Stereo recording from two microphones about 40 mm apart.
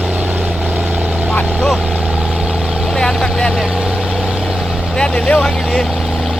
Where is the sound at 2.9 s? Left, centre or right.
Centre.